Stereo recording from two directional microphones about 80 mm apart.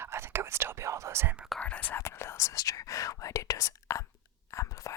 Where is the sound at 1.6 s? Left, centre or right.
Centre.